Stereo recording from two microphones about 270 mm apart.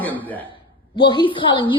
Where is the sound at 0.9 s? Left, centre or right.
Centre.